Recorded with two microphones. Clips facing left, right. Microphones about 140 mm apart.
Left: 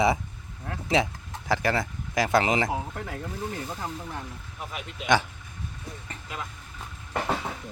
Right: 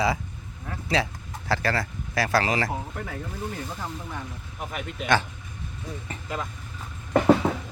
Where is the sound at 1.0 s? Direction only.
20° left (ahead or behind).